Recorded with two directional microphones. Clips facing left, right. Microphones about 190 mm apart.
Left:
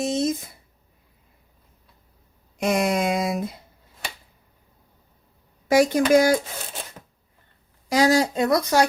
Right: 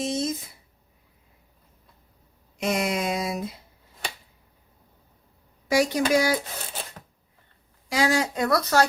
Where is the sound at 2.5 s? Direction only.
50° left (ahead or behind).